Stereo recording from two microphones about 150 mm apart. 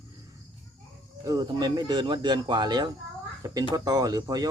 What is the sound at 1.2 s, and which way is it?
Speech, 25° right (ahead or behind).